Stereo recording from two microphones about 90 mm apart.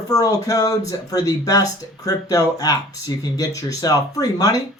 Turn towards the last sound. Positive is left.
turn(degrees=45)  # may be behind; listen again after turning